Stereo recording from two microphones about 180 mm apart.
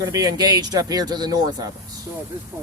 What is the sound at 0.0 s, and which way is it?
Speech, 20° right (ahead or behind).